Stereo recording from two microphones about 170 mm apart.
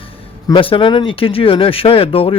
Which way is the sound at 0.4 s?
30° left (ahead or behind).